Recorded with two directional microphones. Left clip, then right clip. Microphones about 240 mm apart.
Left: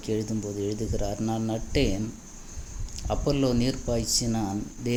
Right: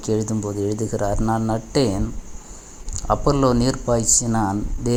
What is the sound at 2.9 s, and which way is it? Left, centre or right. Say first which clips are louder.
Speech: right 8 dB; centre.